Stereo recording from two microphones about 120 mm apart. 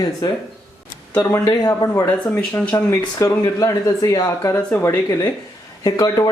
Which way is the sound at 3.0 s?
30° left (ahead or behind).